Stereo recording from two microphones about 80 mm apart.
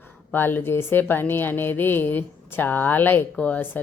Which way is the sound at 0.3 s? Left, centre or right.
Left.